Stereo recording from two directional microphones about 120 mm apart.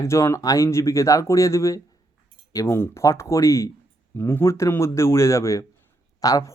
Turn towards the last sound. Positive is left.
turn(degrees=25)  # may be behind; listen again after turning